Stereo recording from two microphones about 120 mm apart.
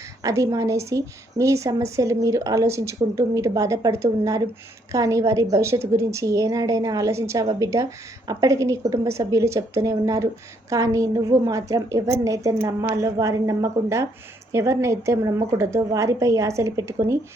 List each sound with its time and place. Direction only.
0.2 s a woman's voice: 25° right (ahead or behind)